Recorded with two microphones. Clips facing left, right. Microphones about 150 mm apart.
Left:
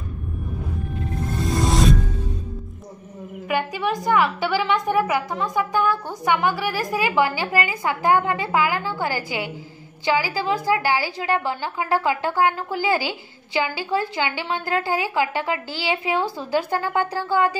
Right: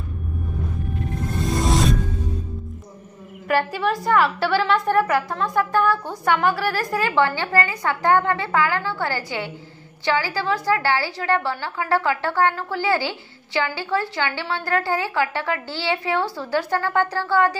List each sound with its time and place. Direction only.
1.4 s music: centre (ahead or behind)
3.4 s a woman's voice: centre (ahead or behind)